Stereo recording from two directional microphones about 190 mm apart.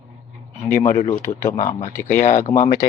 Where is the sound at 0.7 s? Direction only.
40° left (ahead or behind).